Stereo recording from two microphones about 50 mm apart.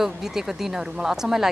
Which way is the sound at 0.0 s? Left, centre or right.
Centre.